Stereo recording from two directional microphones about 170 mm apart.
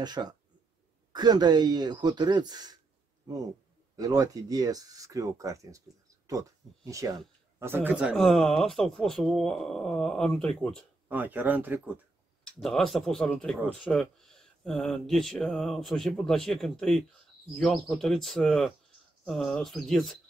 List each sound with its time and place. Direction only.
0.0 s speech: 25° right (ahead or behind)
3.9 s speech: 20° right (ahead or behind); by 10.8 s 5° left (ahead or behind)
11.1 s speech: 10° right (ahead or behind)
12.5 s speech: centre (ahead or behind)